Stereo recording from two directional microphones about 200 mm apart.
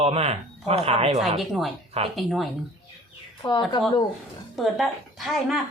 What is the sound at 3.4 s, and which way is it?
Speech, 20° left (ahead or behind).